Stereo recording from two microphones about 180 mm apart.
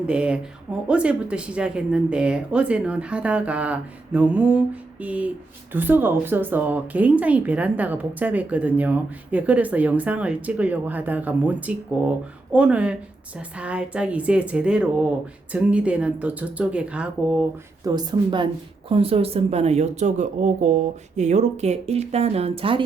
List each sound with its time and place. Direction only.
0.1 s speech: 5° right (ahead or behind)
17.8 s a woman's voice: 25° right (ahead or behind)